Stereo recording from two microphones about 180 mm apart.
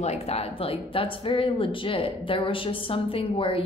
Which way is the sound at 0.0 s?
35° left (ahead or behind).